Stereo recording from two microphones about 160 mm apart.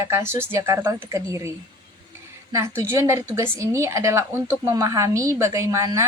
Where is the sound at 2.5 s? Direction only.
15° right (ahead or behind).